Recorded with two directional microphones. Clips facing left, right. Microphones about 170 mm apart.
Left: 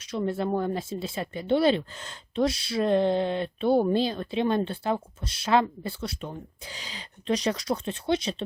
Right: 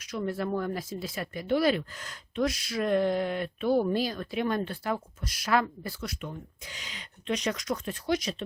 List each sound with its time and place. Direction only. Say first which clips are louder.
0.1 s speech: left 3 dB; 25° left (ahead or behind)